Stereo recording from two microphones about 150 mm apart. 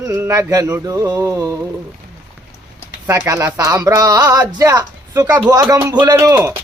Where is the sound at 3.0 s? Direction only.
15° right (ahead or behind).